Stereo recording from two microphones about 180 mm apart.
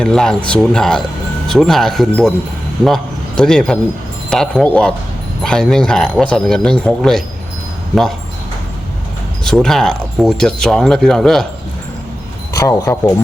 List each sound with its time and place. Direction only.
0.0 s a man's voice: 5° left (ahead or behind)
9.4 s speech: centre (ahead or behind)
12.5 s speech: 15° left (ahead or behind)